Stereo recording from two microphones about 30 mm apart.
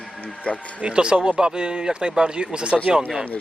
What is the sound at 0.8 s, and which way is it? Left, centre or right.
Speech, right.